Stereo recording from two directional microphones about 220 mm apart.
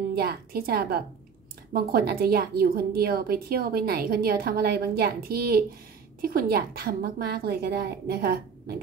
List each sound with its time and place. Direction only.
0.1 s a woman's voice: 45° right (ahead or behind)